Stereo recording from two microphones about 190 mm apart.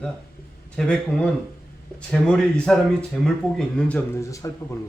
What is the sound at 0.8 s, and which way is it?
A man's voice, 5° left (ahead or behind).